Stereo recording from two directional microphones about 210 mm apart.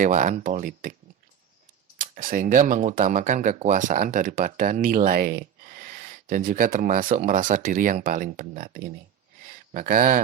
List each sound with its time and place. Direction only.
0.0 s speech: 35° right (ahead or behind)
2.0 s speech: 40° right (ahead or behind)